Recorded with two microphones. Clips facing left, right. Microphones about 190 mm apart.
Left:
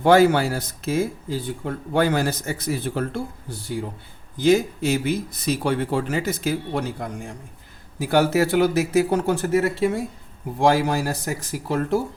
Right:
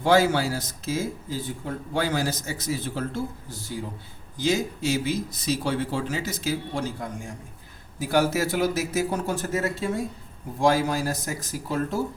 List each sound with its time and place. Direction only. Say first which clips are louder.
0.0 s speech: left 5 dB; 60° left (ahead or behind)
7.9 s speech: left 4 dB; 65° left (ahead or behind)